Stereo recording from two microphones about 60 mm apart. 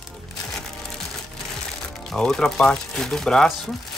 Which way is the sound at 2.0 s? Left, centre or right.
Centre.